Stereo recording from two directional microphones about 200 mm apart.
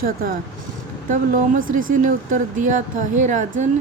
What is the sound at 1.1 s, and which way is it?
Speech, 40° right (ahead or behind).